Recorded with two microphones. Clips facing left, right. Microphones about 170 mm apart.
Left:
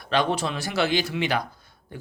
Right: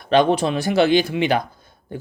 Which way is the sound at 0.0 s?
20° right (ahead or behind).